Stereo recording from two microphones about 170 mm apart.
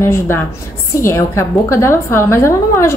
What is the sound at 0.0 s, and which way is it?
A woman's voice, 15° left (ahead or behind).